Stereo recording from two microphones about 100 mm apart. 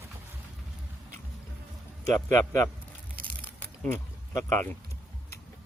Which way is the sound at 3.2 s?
15° left (ahead or behind).